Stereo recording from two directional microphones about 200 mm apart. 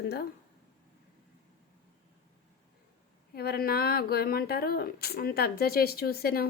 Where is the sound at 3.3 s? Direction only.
50° left (ahead or behind).